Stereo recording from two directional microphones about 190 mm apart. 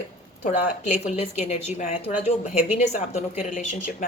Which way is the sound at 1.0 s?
35° left (ahead or behind).